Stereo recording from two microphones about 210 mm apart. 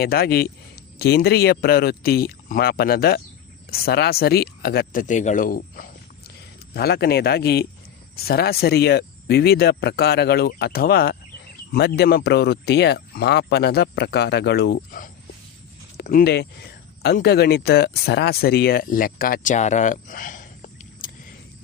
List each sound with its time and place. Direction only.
0.0 s speech: 45° left (ahead or behind)